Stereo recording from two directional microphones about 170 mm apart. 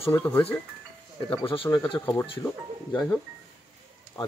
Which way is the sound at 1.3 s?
30° left (ahead or behind).